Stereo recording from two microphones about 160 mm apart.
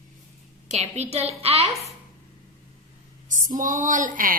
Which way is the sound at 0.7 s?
40° right (ahead or behind).